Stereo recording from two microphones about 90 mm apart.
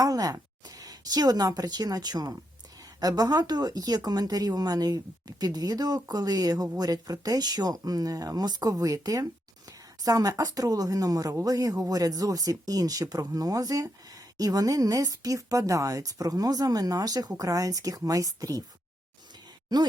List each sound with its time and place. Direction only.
0.0 s a woman's voice: 45° right (ahead or behind)